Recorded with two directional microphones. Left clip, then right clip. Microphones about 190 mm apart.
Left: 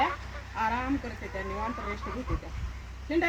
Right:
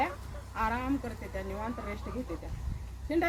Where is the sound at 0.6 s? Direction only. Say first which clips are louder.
Left 2 dB; centre (ahead or behind).